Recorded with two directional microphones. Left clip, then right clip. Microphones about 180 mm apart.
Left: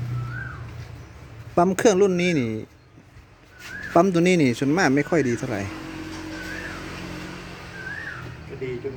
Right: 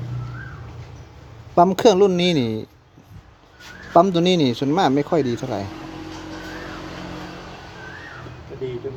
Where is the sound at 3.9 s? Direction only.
5° left (ahead or behind).